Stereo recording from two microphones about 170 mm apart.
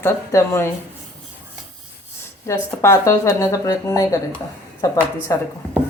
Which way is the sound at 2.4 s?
15° left (ahead or behind).